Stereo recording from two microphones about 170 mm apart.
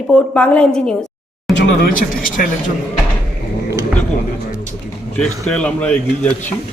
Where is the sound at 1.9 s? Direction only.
50° left (ahead or behind).